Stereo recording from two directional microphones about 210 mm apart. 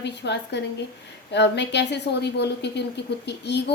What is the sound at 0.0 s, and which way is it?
A woman's voice, 55° left (ahead or behind).